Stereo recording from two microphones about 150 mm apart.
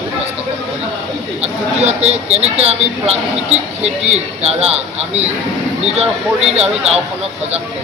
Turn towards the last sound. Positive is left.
turn(degrees=-45)  # may be behind; listen again after turning